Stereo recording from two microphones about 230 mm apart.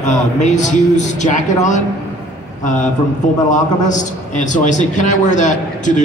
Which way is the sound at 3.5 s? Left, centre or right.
Left.